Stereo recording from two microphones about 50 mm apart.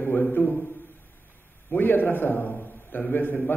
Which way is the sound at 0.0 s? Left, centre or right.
Left.